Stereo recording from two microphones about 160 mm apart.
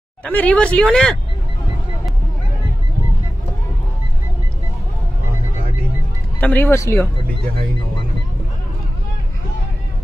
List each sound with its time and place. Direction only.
0.2 s speech: 10° left (ahead or behind)
6.4 s speech: 15° left (ahead or behind)